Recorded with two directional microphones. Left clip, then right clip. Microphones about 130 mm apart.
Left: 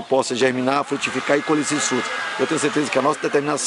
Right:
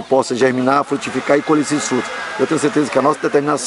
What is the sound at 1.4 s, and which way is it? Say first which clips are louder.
Speech: right 4 dB; 25° left (ahead or behind).